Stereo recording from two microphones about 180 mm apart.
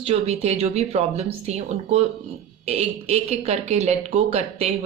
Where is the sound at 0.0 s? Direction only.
35° right (ahead or behind).